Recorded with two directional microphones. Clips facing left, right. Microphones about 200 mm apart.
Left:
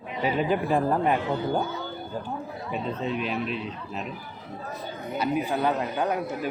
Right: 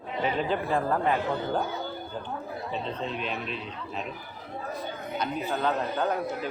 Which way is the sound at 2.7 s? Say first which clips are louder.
Left 5 dB; 5° left (ahead or behind).